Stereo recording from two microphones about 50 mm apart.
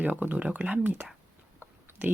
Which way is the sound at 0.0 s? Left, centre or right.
Right.